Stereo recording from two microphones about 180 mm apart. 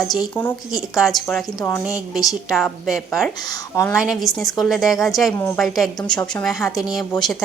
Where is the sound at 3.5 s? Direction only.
15° left (ahead or behind).